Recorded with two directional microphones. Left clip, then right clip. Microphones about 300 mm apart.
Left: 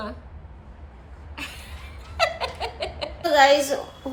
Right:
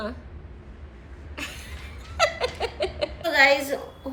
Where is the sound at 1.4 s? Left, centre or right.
Centre.